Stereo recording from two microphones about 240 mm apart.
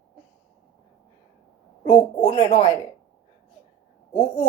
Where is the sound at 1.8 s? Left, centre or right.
Left.